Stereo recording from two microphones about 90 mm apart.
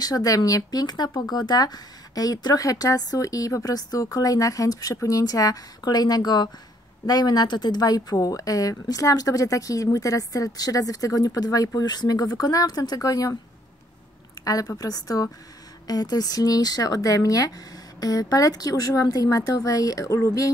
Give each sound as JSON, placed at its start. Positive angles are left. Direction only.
{"t": 0.0, "sound": "a woman's voice", "side_deg": 40}
{"t": 14.4, "sound": "a woman's voice", "side_deg": 40}